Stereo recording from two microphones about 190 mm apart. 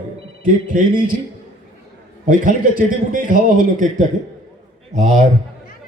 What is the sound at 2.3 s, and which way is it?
A man's voice, 45° right (ahead or behind).